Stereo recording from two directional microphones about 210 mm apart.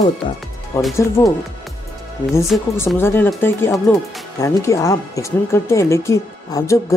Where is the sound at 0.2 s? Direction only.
25° left (ahead or behind).